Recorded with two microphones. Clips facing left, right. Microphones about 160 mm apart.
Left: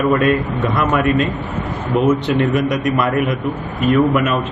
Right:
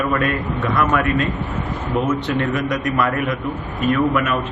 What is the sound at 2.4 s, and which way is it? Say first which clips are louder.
A man's voice: left 4 dB; 15° left (ahead or behind).